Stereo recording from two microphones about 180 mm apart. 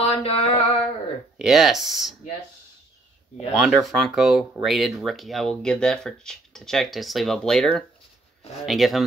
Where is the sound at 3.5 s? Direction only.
Centre (ahead or behind).